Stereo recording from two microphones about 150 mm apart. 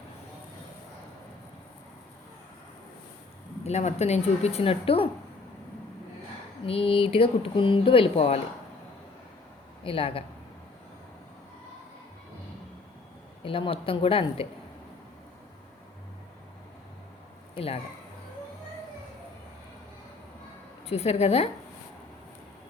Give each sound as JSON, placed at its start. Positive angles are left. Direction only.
{"t": 3.6, "sound": "speech", "side_deg": 50}
{"t": 6.7, "sound": "speech", "side_deg": 40}
{"t": 9.8, "sound": "speech", "side_deg": 35}
{"t": 13.4, "sound": "speech", "side_deg": 35}
{"t": 20.8, "sound": "speech", "side_deg": 45}